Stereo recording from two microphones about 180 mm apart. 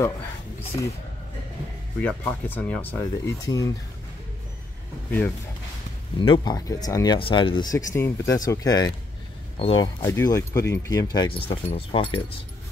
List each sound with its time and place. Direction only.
0.6 s speech: 15° left (ahead or behind)
2.0 s speech: 10° left (ahead or behind)
6.1 s speech: 25° left (ahead or behind)
10.0 s speech: 15° left (ahead or behind)